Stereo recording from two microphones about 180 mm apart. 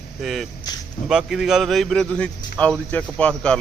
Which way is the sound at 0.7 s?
20° left (ahead or behind).